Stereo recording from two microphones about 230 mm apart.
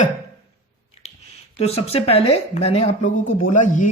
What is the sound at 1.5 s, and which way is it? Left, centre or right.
Speech, left.